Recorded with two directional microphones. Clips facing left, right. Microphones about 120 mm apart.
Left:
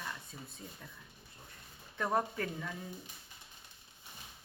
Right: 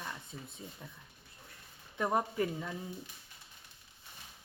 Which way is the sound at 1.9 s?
15° right (ahead or behind).